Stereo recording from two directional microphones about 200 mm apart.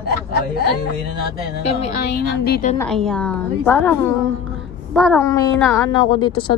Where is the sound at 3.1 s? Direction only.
5° left (ahead or behind).